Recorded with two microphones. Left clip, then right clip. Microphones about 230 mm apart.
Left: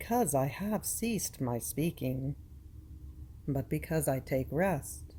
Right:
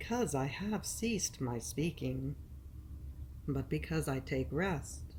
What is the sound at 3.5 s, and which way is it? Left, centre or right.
A woman's voice, left.